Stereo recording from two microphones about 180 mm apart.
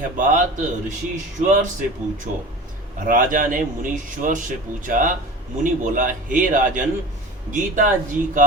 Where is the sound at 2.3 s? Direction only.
45° right (ahead or behind).